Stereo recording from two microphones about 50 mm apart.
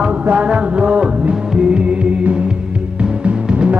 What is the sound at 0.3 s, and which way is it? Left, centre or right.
Music, right.